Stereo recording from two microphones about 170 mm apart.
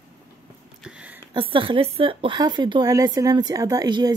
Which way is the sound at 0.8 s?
5° right (ahead or behind).